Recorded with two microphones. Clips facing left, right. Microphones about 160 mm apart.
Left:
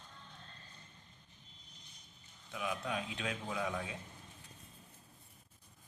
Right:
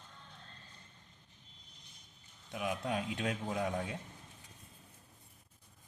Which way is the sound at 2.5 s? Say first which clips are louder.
Right 3 dB; 45° right (ahead or behind).